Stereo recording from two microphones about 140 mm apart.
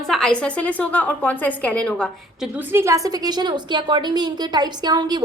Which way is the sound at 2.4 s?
15° right (ahead or behind).